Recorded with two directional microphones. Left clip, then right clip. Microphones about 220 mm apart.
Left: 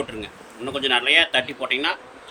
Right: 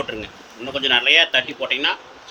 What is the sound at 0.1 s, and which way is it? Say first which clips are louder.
A man's voice: right 4 dB; 10° left (ahead or behind).